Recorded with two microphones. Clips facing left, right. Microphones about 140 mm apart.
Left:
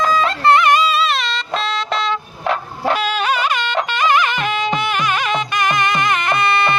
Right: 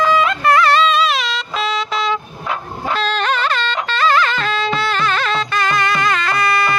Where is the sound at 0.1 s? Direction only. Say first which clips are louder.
Even; 35° left (ahead or behind); by 2.1 s centre (ahead or behind).